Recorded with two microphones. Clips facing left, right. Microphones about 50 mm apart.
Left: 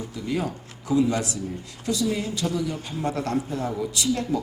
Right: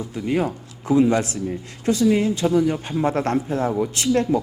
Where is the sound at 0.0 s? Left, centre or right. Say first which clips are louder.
Right 5 dB; right.